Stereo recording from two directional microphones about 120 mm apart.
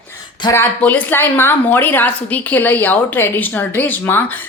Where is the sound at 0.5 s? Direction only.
15° left (ahead or behind).